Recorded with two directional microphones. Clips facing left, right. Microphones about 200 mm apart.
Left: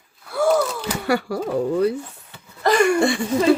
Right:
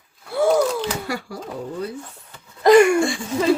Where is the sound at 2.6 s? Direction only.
10° right (ahead or behind).